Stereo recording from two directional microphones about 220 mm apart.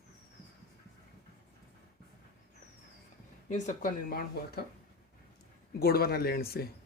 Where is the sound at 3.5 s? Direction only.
35° left (ahead or behind).